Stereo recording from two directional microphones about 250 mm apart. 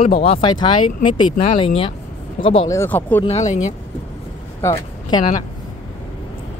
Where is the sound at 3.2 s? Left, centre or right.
Left.